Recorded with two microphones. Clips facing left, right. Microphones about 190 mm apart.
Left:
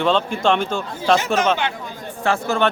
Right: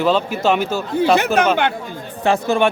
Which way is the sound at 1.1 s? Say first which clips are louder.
Right 4 dB; 65° right (ahead or behind).